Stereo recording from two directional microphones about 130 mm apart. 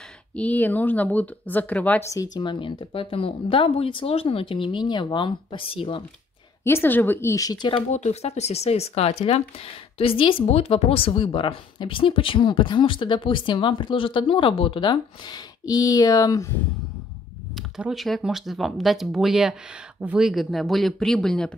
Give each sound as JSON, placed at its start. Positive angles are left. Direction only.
{"t": 0.4, "sound": "a woman's voice", "side_deg": 10}
{"t": 2.3, "sound": "speech", "side_deg": 35}
{"t": 6.6, "sound": "a woman's voice", "side_deg": 15}
{"t": 7.9, "sound": "speech", "side_deg": 60}
{"t": 17.6, "sound": "speech", "side_deg": -5}